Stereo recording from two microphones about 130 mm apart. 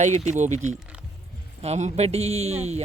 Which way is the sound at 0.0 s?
65° right (ahead or behind).